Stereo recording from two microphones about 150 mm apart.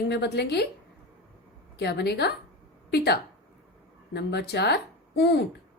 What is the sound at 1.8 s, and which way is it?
A woman's voice, 90° left.